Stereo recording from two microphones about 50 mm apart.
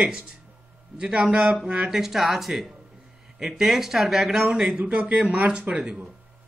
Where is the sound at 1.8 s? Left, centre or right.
Centre.